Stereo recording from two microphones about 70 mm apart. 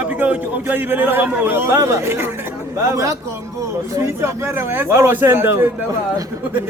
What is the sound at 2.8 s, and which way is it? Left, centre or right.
A man's voice, right.